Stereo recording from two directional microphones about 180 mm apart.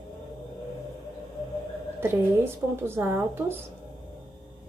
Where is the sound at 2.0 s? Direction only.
15° right (ahead or behind).